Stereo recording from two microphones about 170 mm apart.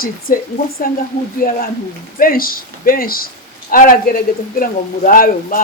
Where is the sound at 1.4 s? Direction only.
55° left (ahead or behind).